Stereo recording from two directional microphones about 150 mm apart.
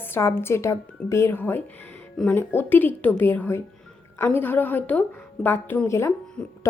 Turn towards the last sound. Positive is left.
turn(degrees=10)  # may be behind; listen again after turning